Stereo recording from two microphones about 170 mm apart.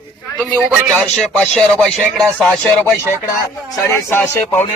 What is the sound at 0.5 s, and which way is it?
Speech, centre (ahead or behind).